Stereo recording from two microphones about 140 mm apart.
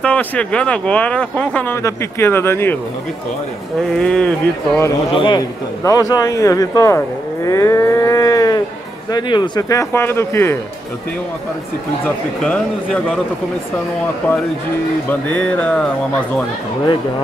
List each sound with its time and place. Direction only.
0.0 s speech: 10° left (ahead or behind)
3.9 s speech: 5° left (ahead or behind)
5.1 s a man's voice: 35° left (ahead or behind); by 10.6 s 15° left (ahead or behind)
12.0 s speech: 5° left (ahead or behind)
15.0 s speech: 10° left (ahead or behind)